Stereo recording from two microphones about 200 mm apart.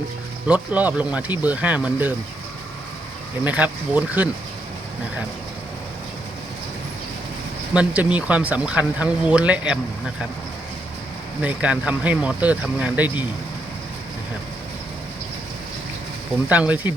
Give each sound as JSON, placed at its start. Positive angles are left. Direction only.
{"t": 0.4, "sound": "speech", "side_deg": -5}
{"t": 3.4, "sound": "speech", "side_deg": -5}
{"t": 7.7, "sound": "speech", "side_deg": -5}
{"t": 11.4, "sound": "speech", "side_deg": -5}
{"t": 16.5, "sound": "speech", "side_deg": -5}